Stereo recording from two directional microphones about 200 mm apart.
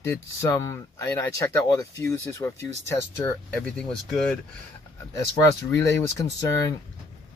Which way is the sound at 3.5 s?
5° left (ahead or behind).